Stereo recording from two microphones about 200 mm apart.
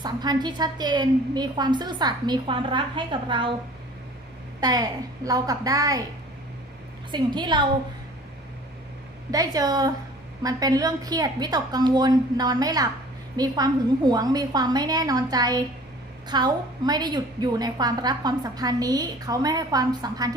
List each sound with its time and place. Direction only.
0.0 s a woman's voice: 20° right (ahead or behind)
4.6 s a woman's voice: 20° right (ahead or behind)
7.1 s a woman's voice: 20° right (ahead or behind)
9.3 s a woman's voice: 20° right (ahead or behind)